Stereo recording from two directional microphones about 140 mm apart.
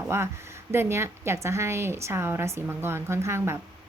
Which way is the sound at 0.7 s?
15° right (ahead or behind).